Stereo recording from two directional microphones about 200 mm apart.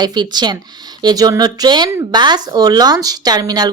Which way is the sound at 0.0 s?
20° right (ahead or behind).